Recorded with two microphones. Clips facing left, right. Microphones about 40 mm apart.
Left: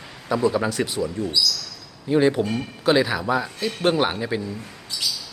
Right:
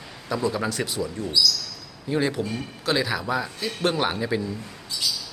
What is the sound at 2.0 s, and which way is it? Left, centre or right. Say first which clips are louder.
A man's voice: left 6 dB; centre.